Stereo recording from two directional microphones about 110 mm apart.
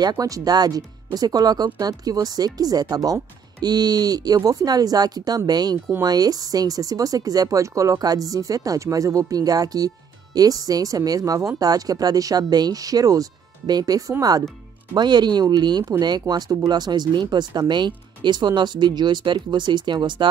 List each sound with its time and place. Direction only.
0.0 s a woman's voice: 40° right (ahead or behind)